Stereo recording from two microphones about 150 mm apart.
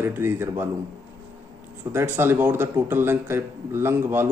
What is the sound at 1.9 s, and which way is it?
Speech, 15° right (ahead or behind).